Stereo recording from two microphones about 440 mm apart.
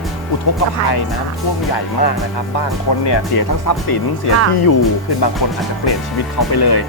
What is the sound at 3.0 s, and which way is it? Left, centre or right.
Speech, left.